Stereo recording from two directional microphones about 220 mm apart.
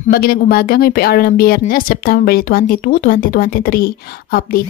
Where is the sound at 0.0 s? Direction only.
40° left (ahead or behind).